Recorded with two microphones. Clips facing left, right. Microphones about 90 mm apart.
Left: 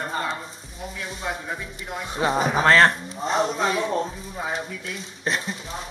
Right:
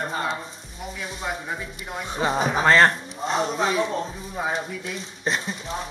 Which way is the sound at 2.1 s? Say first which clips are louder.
Left 1 dB; centre (ahead or behind).